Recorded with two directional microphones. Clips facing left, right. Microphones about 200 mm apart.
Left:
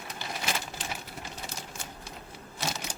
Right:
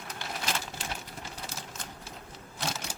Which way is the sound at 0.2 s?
5° left (ahead or behind).